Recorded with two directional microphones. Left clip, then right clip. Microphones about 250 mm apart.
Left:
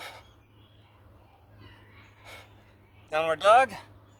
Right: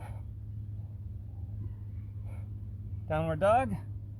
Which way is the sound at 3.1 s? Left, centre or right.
Centre.